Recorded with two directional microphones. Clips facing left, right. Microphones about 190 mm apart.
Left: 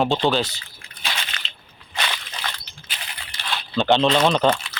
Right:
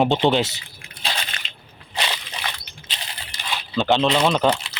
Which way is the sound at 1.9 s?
25° right (ahead or behind).